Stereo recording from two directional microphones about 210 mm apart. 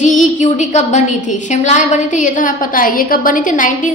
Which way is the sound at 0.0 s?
35° left (ahead or behind).